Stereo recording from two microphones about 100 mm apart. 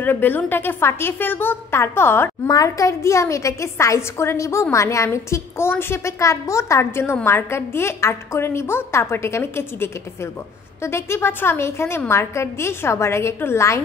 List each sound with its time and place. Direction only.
0.0 s a woman's voice: 20° left (ahead or behind)
2.4 s a woman's voice: 35° left (ahead or behind)